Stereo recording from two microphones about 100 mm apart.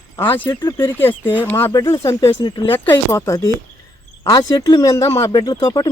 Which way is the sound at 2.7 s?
20° left (ahead or behind).